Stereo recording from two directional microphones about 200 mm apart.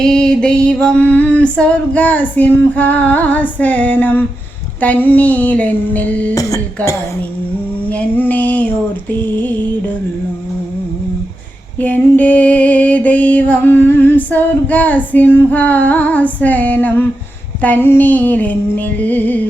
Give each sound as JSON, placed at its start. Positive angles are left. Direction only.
{"t": 0.0, "sound": "music", "side_deg": 5}
{"t": 11.8, "sound": "music", "side_deg": 10}